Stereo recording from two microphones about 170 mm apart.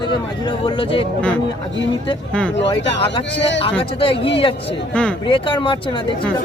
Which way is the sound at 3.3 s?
90° left.